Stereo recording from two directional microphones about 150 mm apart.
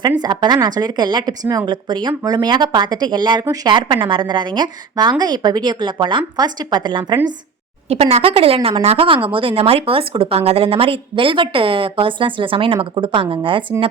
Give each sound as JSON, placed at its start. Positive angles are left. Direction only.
{"t": 0.2, "sound": "a woman's voice", "side_deg": -30}
{"t": 7.9, "sound": "a woman's voice", "side_deg": -40}